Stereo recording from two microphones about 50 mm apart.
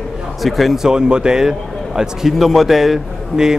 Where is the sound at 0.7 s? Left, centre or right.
Centre.